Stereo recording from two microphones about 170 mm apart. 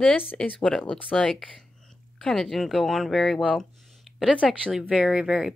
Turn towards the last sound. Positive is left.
turn(degrees=-5)  # may be behind; listen again after turning